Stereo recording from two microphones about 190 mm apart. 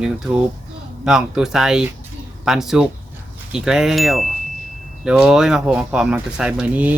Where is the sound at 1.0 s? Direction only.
Centre (ahead or behind).